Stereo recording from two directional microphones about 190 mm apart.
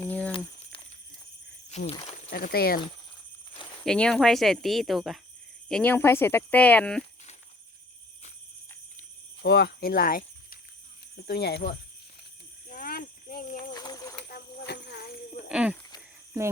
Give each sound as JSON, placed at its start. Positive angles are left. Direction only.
{"t": 0.0, "sound": "crumpling", "side_deg": 10}
{"t": 0.3, "sound": "crumpling", "side_deg": 25}
{"t": 1.9, "sound": "speech", "side_deg": 25}
{"t": 2.3, "sound": "speech", "side_deg": 50}
{"t": 3.8, "sound": "speech", "side_deg": 5}
{"t": 9.0, "sound": "cricket", "side_deg": 55}
{"t": 11.3, "sound": "speech", "side_deg": 60}
{"t": 12.6, "sound": "cricket", "side_deg": 45}
{"t": 13.7, "sound": "bird", "side_deg": 20}
{"t": 14.2, "sound": "a sound", "side_deg": 55}
{"t": 15.4, "sound": "a sound", "side_deg": -5}